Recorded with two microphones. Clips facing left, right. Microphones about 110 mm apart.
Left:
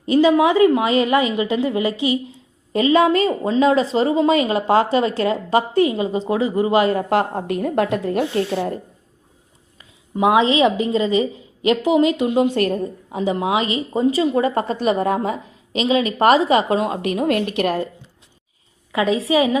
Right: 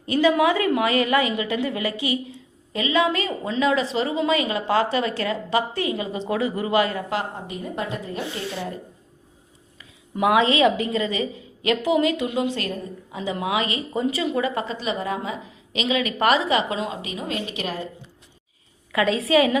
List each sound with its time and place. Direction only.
0.0 s a woman's voice: 25° left (ahead or behind)
2.7 s a woman's voice: 45° left (ahead or behind)
7.1 s a woman's voice: 55° left (ahead or behind)
8.4 s speech: 45° left (ahead or behind)
10.2 s a woman's voice: 20° left (ahead or behind); by 13.1 s 55° left (ahead or behind)
13.1 s speech: 35° left (ahead or behind); by 17.8 s 55° left (ahead or behind)
18.9 s a woman's voice: 15° left (ahead or behind)